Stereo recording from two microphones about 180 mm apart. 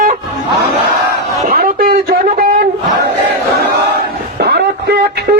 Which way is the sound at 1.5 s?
55° right (ahead or behind).